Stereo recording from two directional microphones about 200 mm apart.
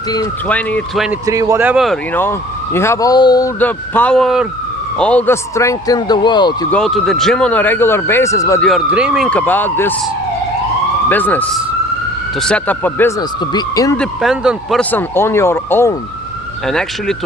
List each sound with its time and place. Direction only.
0.4 s speech: 5° left (ahead or behind)
1.3 s speech: 15° right (ahead or behind)
2.7 s speech: 15° left (ahead or behind)
3.6 s speech: 10° left (ahead or behind)
6.7 s speech: 5° left (ahead or behind)
8.6 s speech: 5° right (ahead or behind)
11.1 s speech: 10° left (ahead or behind)
13.9 s speech: centre (ahead or behind)
16.6 s speech: centre (ahead or behind)